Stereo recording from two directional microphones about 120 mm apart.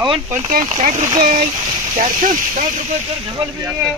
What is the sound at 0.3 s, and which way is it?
Speech, 90° right.